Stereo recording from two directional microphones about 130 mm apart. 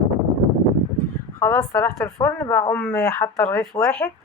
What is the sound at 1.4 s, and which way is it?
Speech, 20° left (ahead or behind).